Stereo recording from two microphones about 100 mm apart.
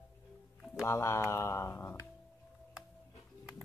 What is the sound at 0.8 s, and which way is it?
Speech, 30° left (ahead or behind).